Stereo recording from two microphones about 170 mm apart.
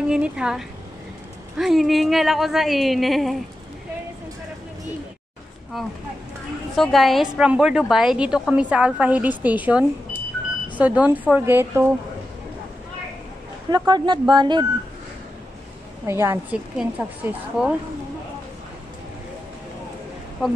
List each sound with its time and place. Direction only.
0.0 s a woman's voice: 5° right (ahead or behind)
5.7 s a woman's voice: centre (ahead or behind)
13.7 s speech: 25° right (ahead or behind)
16.1 s a woman's voice: 15° right (ahead or behind)